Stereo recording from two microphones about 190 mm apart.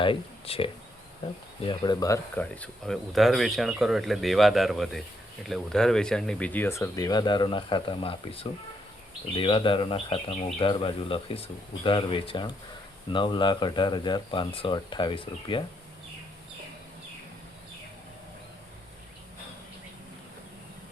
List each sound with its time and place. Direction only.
0.0 s speech: 30° left (ahead or behind)